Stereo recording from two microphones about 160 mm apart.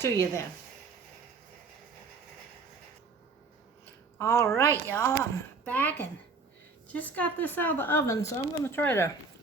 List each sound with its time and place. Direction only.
0.0 s speech: 15° left (ahead or behind)
4.2 s a woman's voice: 20° left (ahead or behind)